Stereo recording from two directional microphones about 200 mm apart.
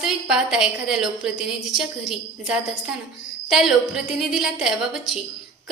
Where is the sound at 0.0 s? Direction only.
5° right (ahead or behind).